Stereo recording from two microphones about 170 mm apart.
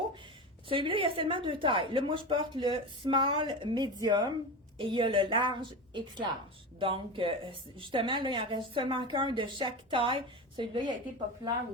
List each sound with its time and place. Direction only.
0.7 s speech: 30° right (ahead or behind)